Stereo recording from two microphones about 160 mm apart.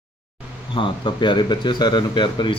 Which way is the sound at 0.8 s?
30° left (ahead or behind).